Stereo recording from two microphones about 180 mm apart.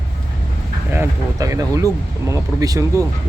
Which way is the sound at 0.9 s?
15° right (ahead or behind).